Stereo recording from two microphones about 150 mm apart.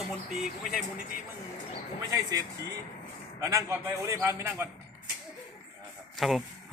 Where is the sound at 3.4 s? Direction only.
15° right (ahead or behind).